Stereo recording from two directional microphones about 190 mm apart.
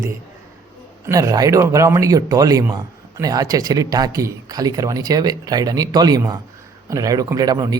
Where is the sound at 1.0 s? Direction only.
15° right (ahead or behind).